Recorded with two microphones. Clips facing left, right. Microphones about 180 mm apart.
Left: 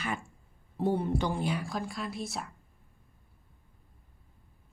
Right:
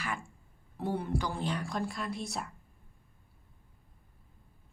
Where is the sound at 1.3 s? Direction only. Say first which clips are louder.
Left 2 dB; 10° left (ahead or behind).